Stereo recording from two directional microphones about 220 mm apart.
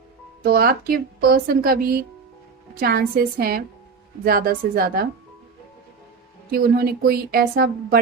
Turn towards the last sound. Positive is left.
turn(degrees=-45)  # may be behind; listen again after turning